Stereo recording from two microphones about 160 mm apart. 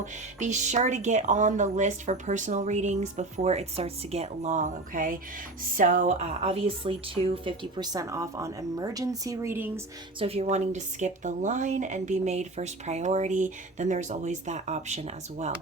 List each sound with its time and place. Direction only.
0.0 s a woman's voice: 50° right (ahead or behind); by 9.8 s 15° right (ahead or behind)
10.2 s a woman's voice: 40° right (ahead or behind)